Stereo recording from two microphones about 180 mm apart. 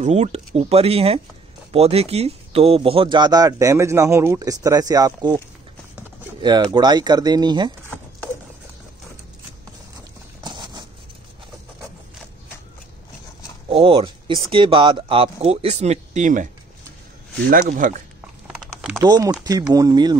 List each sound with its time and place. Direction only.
0.0 s speech: 35° right (ahead or behind)
6.4 s speech: 25° right (ahead or behind)
10.4 s patter: 25° right (ahead or behind)
13.7 s speech: 30° right (ahead or behind)
17.5 s speech: 50° right (ahead or behind)
18.9 s speech: 20° right (ahead or behind)